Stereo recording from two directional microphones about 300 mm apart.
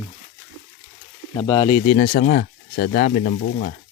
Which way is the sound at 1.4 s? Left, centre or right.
Centre.